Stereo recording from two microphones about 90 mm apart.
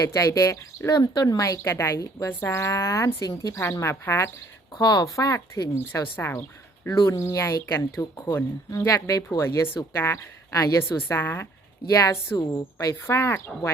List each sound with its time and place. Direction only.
0.1 s speech: 35° left (ahead or behind)
4.8 s speech: 50° left (ahead or behind)
5.9 s speech: 25° left (ahead or behind)
6.8 s speech: 35° left (ahead or behind)
9.7 s speech: 25° left (ahead or behind)
10.5 s speech: 35° left (ahead or behind)